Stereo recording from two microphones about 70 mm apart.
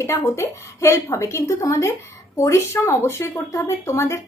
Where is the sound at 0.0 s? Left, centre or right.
Left.